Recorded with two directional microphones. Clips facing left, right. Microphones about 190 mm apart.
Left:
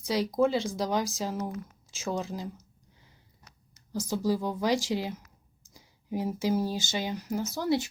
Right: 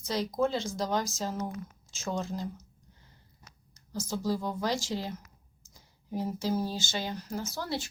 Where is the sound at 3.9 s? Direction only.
15° left (ahead or behind).